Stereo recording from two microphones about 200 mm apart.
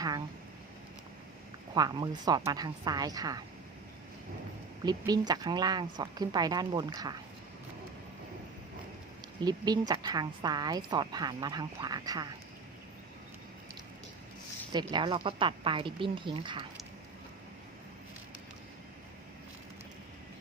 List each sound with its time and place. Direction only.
1.7 s a woman's voice: 20° right (ahead or behind)
4.8 s a woman's voice: 20° right (ahead or behind)
9.4 s a woman's voice: 20° right (ahead or behind)
14.7 s a woman's voice: 20° right (ahead or behind)